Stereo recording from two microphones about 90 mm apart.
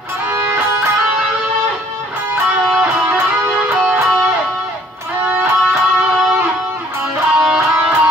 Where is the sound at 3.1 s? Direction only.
15° right (ahead or behind).